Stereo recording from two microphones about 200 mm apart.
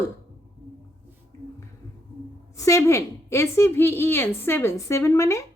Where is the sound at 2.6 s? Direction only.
15° left (ahead or behind).